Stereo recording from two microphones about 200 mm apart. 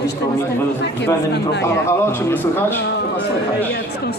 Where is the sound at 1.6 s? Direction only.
10° left (ahead or behind).